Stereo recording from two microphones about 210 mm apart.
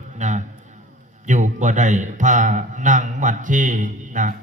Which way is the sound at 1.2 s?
35° right (ahead or behind).